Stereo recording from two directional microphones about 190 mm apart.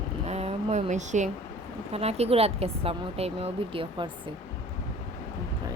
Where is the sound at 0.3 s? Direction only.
35° right (ahead or behind).